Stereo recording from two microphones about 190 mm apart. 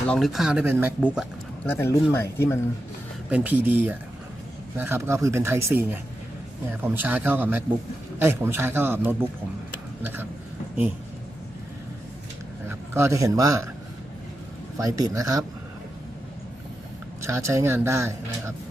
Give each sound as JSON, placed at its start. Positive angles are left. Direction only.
{"t": 0.1, "sound": "speech", "side_deg": 0}
{"t": 1.6, "sound": "speech", "side_deg": 10}
{"t": 3.2, "sound": "speech", "side_deg": -10}
{"t": 12.6, "sound": "a man's voice", "side_deg": -15}
{"t": 14.8, "sound": "speech", "side_deg": -20}
{"t": 17.2, "sound": "speech", "side_deg": -15}